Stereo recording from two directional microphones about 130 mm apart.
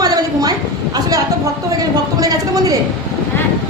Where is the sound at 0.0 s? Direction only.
30° right (ahead or behind).